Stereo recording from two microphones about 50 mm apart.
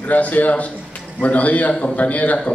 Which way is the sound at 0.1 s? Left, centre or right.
Left.